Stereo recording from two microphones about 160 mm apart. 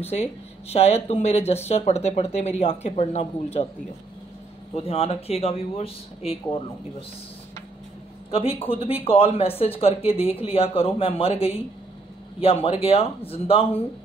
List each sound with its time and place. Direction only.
0.1 s speech: 40° left (ahead or behind)
4.7 s speech: 40° left (ahead or behind)
8.3 s speech: 35° left (ahead or behind)
12.6 s speech: 35° left (ahead or behind)